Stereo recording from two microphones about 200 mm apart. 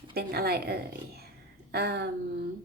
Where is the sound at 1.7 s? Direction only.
55° right (ahead or behind).